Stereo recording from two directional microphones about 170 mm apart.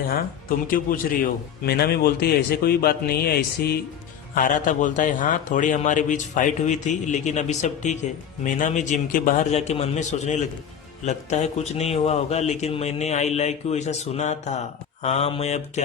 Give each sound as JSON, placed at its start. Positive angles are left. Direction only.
{"t": 0.1, "sound": "speech", "side_deg": 55}
{"t": 4.4, "sound": "a man's voice", "side_deg": 50}